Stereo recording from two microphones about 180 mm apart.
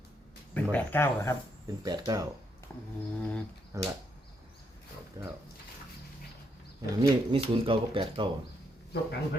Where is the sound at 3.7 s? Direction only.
15° right (ahead or behind).